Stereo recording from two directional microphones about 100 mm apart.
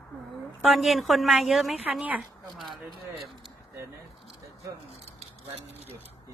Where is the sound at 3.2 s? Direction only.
Centre (ahead or behind).